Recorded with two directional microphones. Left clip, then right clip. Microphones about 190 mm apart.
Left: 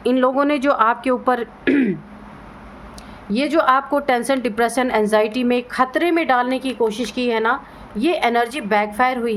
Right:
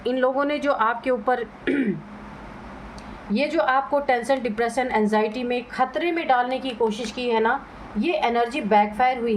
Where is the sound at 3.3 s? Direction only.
40° left (ahead or behind).